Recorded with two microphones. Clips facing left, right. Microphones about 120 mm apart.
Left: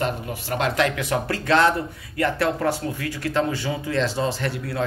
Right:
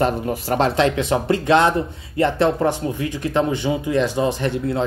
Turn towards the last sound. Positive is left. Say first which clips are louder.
# right 6 dB
turn(degrees=-20)  # may be behind; listen again after turning